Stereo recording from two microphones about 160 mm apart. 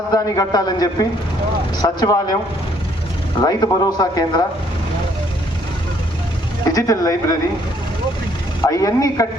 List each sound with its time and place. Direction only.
0.1 s speech: 25° left (ahead or behind)
3.4 s speech: 25° left (ahead or behind)
6.7 s speech: 20° left (ahead or behind)
8.6 s speech: 20° left (ahead or behind)